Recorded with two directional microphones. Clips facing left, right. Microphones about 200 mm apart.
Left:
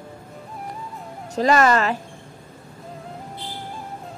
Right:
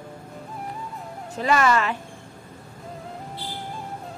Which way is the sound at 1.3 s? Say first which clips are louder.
Left 3 dB; 40° left (ahead or behind).